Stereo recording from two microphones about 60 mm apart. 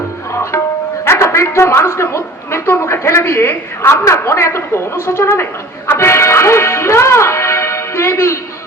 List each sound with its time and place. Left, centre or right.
1.2 s a woman's voice: left